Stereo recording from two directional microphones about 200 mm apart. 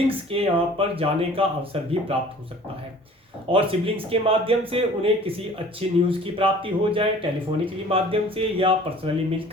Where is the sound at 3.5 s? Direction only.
25° right (ahead or behind).